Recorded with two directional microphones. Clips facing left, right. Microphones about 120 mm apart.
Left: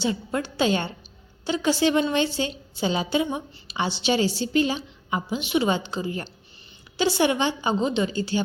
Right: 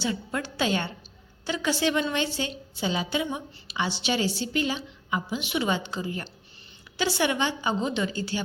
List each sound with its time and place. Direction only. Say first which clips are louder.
0.0 s a woman's voice: left 4 dB; 25° left (ahead or behind)